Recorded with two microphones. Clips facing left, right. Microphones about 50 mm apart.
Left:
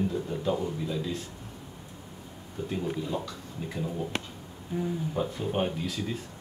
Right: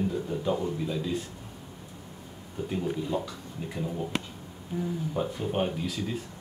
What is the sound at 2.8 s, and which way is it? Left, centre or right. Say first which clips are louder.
Speech: right 2 dB; centre.